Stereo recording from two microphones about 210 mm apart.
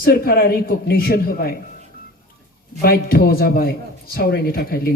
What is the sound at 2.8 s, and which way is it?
Speech, 45° left (ahead or behind).